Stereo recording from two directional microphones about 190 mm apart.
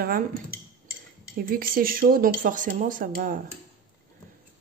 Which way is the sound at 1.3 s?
50° right (ahead or behind).